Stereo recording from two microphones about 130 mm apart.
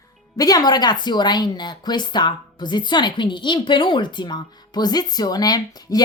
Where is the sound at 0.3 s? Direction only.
30° left (ahead or behind).